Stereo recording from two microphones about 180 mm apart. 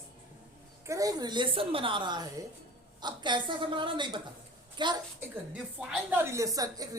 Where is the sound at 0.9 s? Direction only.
20° right (ahead or behind).